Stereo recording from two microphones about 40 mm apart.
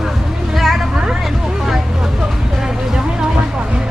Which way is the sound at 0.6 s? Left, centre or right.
Centre.